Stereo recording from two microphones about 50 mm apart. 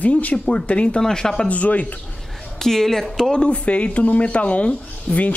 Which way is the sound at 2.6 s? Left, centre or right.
Centre.